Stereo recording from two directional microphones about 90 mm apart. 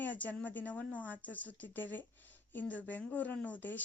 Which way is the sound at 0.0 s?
20° left (ahead or behind).